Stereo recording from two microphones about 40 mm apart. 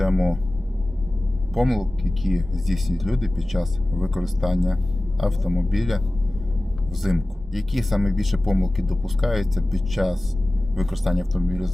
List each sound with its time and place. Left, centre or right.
0.0 s speech: centre
1.5 s speech: centre
7.0 s speech: centre